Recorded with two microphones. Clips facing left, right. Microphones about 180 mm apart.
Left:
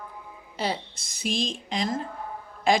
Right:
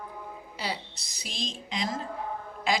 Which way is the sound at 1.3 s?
90° left.